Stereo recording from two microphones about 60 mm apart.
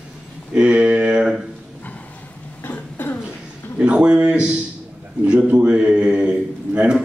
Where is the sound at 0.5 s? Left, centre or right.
Centre.